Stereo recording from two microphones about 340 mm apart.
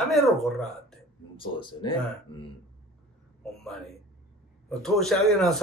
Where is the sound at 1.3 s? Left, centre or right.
Centre.